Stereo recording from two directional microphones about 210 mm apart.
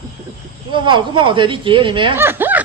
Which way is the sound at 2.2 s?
10° right (ahead or behind).